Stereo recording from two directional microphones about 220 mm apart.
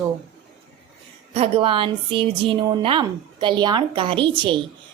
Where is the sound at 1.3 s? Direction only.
25° right (ahead or behind).